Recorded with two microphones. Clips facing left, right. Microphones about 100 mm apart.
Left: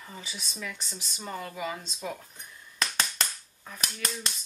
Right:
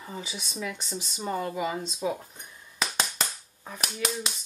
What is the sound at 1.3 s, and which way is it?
Speech, 15° right (ahead or behind).